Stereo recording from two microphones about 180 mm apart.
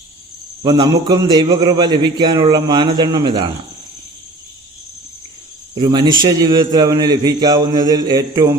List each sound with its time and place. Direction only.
0.6 s a man's voice: 25° right (ahead or behind)
5.7 s a man's voice: 25° right (ahead or behind)